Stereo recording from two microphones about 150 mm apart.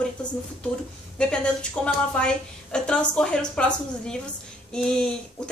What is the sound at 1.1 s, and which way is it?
A woman's voice, 5° left (ahead or behind).